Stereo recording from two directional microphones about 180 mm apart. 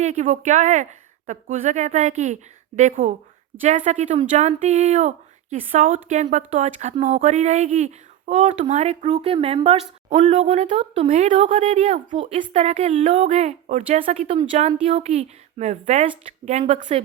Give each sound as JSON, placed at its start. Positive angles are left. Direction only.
{"t": 0.0, "sound": "speech", "side_deg": -40}